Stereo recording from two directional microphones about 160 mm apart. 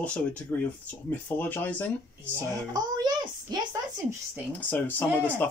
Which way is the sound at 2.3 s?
20° right (ahead or behind).